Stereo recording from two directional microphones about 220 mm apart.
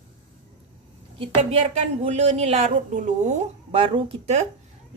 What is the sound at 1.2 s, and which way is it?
A woman's voice, 25° right (ahead or behind).